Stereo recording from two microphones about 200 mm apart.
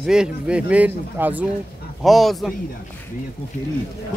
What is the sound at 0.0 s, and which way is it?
A man's voice, 5° right (ahead or behind).